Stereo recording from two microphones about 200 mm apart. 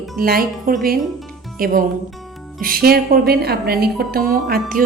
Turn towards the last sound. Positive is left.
turn(degrees=-45)  # may be behind; listen again after turning